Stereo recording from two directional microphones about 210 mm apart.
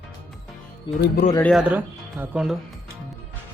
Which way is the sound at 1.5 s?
5° right (ahead or behind).